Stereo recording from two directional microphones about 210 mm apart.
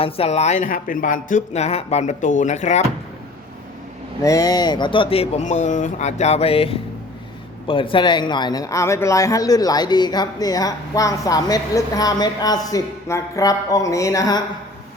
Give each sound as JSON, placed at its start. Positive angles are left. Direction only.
{"t": 0.0, "sound": "speech", "side_deg": 30}
{"t": 4.2, "sound": "speech", "side_deg": 15}